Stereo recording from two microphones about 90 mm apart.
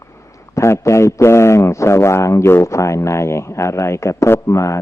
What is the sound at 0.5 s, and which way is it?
A man's voice, 35° left (ahead or behind).